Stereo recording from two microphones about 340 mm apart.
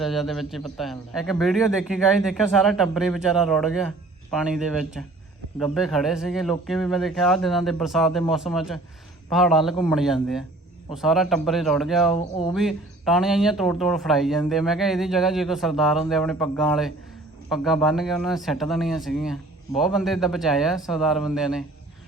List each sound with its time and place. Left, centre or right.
0.0 s speech: centre
12.1 s speech: centre
12.5 s speech: centre